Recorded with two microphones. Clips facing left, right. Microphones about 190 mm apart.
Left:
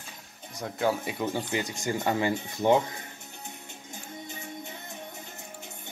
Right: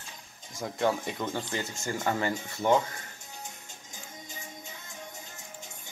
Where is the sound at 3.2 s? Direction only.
60° left (ahead or behind).